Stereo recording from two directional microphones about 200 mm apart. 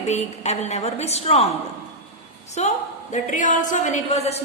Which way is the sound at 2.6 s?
35° left (ahead or behind).